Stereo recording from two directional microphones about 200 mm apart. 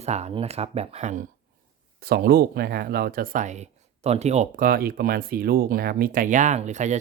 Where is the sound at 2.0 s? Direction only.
50° right (ahead or behind).